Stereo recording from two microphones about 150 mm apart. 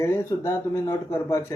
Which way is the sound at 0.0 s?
20° left (ahead or behind).